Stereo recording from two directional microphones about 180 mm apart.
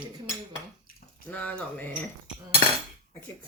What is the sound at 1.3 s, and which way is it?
Speech, 10° left (ahead or behind).